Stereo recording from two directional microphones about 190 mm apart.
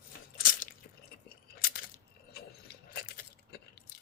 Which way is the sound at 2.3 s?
55° left (ahead or behind).